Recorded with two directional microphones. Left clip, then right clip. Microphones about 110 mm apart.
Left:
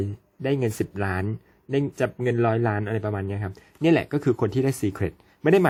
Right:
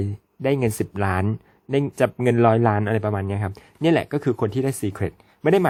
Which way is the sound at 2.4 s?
35° right (ahead or behind).